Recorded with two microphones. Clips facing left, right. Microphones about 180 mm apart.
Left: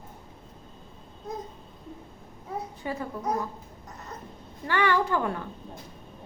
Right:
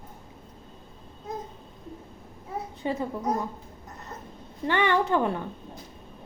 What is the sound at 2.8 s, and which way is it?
Speech, 25° right (ahead or behind).